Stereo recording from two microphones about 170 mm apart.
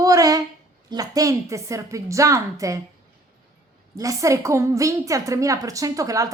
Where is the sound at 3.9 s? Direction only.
20° right (ahead or behind).